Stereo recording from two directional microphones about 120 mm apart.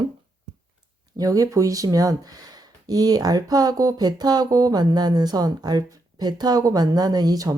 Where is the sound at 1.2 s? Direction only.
30° right (ahead or behind).